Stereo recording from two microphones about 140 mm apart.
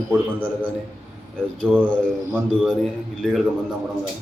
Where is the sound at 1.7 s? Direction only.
5° left (ahead or behind).